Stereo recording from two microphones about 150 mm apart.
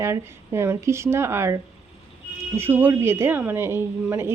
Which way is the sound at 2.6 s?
15° right (ahead or behind).